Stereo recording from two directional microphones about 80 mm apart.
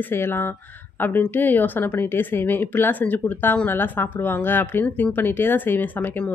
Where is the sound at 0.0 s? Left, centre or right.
Left.